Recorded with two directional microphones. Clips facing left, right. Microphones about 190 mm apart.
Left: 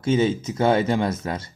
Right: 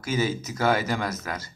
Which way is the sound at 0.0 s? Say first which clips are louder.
Left 6 dB; 25° left (ahead or behind).